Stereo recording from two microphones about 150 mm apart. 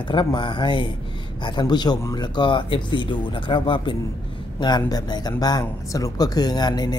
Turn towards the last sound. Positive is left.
turn(degrees=25)  # may be behind; listen again after turning